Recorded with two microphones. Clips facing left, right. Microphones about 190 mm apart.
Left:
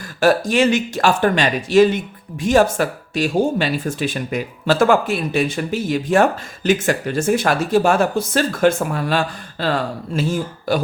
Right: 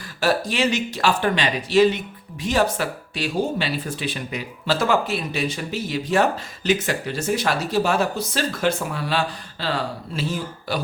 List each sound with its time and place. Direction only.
0.2 s speech: 50° left (ahead or behind)